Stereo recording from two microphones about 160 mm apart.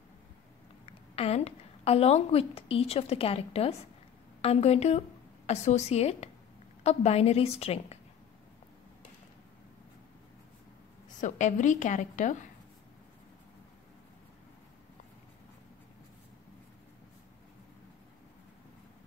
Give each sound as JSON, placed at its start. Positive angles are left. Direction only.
{"t": 0.8, "sound": "a woman's voice", "side_deg": 40}
{"t": 11.1, "sound": "a woman's voice", "side_deg": 50}